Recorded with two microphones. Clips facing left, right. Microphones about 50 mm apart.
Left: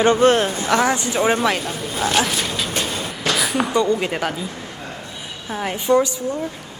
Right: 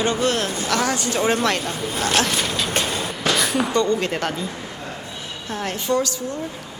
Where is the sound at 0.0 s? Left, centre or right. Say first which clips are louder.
Left 6 dB; left; by 2.5 s centre.